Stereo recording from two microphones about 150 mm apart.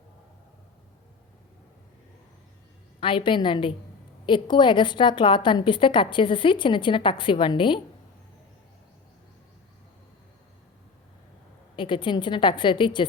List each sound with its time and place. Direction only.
3.0 s a woman's voice: 35° left (ahead or behind)
11.8 s a woman's voice: 30° left (ahead or behind)